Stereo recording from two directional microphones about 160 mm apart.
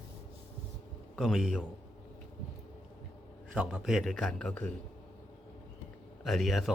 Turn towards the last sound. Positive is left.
turn(degrees=0)  # may be behind; listen again after turning